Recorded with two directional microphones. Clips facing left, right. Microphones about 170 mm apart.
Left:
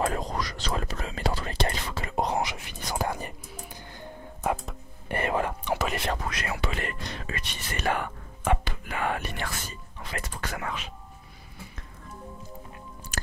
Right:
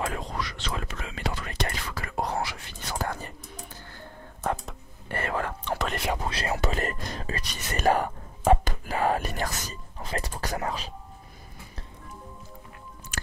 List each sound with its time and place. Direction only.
0.0 s whispering: 40° left (ahead or behind); by 3.3 s 15° left (ahead or behind)
5.0 s whispering: 15° left (ahead or behind)
5.8 s whispering: 5° left (ahead or behind)
6.2 s whispering: 30° right (ahead or behind)
13.1 s music: 40° left (ahead or behind)